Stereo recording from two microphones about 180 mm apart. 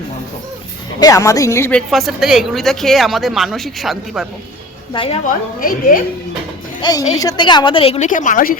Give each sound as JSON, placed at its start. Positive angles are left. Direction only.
{"t": 0.9, "sound": "a woman's voice", "side_deg": 20}
{"t": 1.9, "sound": "speech", "side_deg": 0}
{"t": 4.9, "sound": "a woman's voice", "side_deg": 30}
{"t": 5.5, "sound": "a woman's voice", "side_deg": 50}
{"t": 6.8, "sound": "a woman's voice", "side_deg": 25}